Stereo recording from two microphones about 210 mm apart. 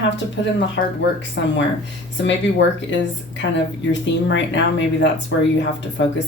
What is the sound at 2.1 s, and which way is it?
Speech, 60° left (ahead or behind).